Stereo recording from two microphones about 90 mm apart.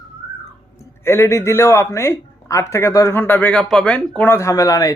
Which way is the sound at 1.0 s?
30° left (ahead or behind).